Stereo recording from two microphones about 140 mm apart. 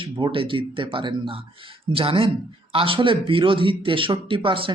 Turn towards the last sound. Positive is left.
turn(degrees=-40)  # may be behind; listen again after turning